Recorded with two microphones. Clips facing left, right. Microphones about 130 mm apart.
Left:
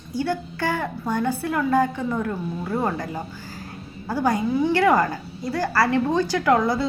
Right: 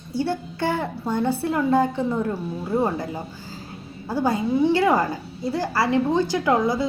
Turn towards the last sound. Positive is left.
turn(degrees=-20)  # may be behind; listen again after turning